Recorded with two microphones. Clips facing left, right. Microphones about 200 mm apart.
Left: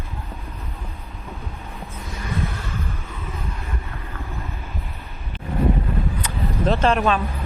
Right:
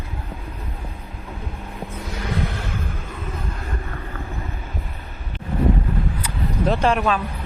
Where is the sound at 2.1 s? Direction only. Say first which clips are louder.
Right 2 dB; 80° right.